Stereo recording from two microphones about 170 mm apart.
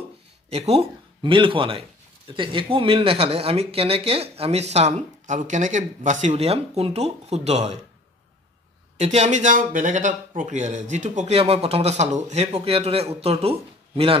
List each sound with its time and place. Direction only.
0.5 s speech: 35° right (ahead or behind)
9.0 s speech: 40° right (ahead or behind)